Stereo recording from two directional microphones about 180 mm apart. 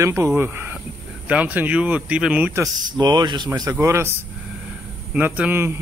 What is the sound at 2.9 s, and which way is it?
Speech, 25° right (ahead or behind).